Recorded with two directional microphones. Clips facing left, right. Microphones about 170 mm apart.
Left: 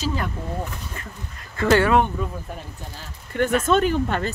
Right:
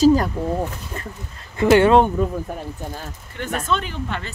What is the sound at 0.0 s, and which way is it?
Speech, 40° right (ahead or behind).